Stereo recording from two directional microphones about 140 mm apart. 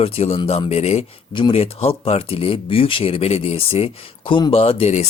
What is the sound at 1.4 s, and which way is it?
Speech, 40° left (ahead or behind).